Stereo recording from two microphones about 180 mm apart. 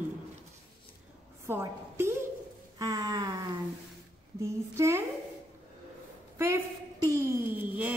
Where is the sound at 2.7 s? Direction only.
20° right (ahead or behind).